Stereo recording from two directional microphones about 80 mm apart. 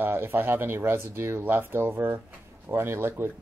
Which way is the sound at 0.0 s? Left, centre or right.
Right.